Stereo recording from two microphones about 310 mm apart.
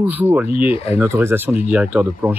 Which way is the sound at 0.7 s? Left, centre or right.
Centre.